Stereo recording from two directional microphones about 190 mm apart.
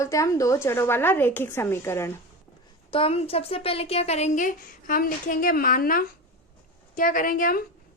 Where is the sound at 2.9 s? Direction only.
30° left (ahead or behind).